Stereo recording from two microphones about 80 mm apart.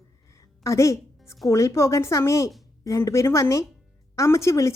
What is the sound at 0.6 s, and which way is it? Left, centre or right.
A woman's voice, left.